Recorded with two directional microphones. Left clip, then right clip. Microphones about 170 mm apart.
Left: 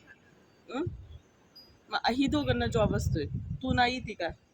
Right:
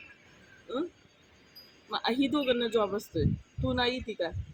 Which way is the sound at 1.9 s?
25° left (ahead or behind).